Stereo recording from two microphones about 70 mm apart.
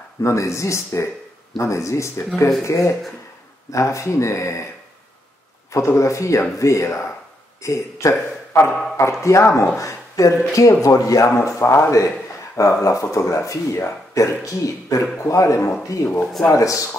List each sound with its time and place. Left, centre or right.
0.2 s speech: left
5.7 s speech: left
8.1 s a man's voice: left
8.9 s speech: left
9.8 s a sound: left
10.5 s speech: left